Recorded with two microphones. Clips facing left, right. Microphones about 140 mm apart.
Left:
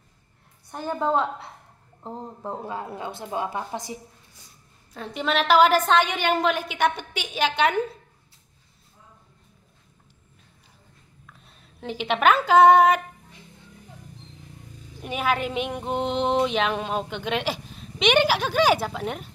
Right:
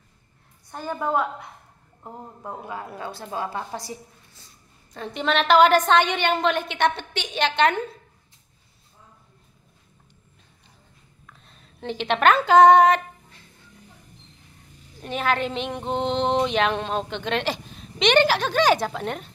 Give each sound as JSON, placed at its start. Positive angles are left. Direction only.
{"t": 0.7, "sound": "a woman's voice", "side_deg": 15}
{"t": 4.9, "sound": "a woman's voice", "side_deg": 5}
{"t": 11.3, "sound": "a sound", "side_deg": 5}
{"t": 15.0, "sound": "speech", "side_deg": 10}